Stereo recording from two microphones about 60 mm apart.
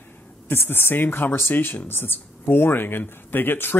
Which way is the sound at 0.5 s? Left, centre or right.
Left.